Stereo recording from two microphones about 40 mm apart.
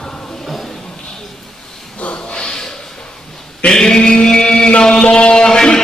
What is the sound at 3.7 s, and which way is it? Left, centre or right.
Mantra, centre.